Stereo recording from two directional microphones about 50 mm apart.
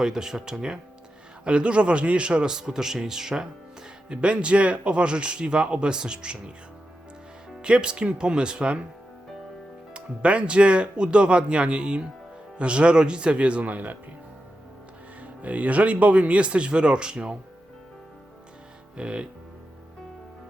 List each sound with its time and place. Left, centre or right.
0.0 s a man's voice: centre
7.6 s speech: centre
9.9 s speech: right
15.2 s speech: right
18.9 s speech: right